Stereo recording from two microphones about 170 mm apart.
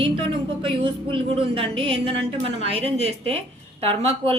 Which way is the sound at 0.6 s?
30° right (ahead or behind).